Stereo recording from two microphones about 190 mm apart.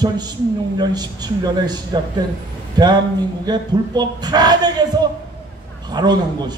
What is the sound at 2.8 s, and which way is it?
Speech, 20° right (ahead or behind).